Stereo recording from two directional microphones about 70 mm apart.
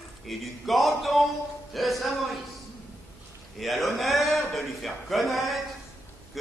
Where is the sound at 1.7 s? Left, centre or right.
Centre.